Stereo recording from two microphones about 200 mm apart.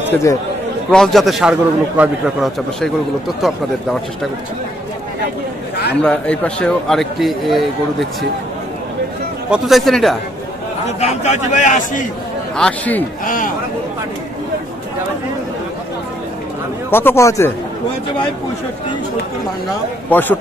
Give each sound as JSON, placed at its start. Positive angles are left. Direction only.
{"t": 0.1, "sound": "speech", "side_deg": 15}
{"t": 0.9, "sound": "a man's voice", "side_deg": 0}
{"t": 6.0, "sound": "a man's voice", "side_deg": 5}
{"t": 9.5, "sound": "a man's voice", "side_deg": 0}
{"t": 11.0, "sound": "a man's voice", "side_deg": 35}
{"t": 12.5, "sound": "a man's voice", "side_deg": 5}
{"t": 13.2, "sound": "speech", "side_deg": 45}
{"t": 16.9, "sound": "speech", "side_deg": 10}
{"t": 20.1, "sound": "speech", "side_deg": 10}